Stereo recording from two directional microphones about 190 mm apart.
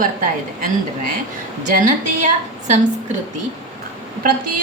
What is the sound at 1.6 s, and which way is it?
A woman's voice, 40° right (ahead or behind).